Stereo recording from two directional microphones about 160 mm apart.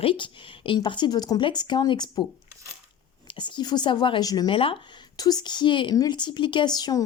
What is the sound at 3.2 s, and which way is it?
Speech, 30° left (ahead or behind).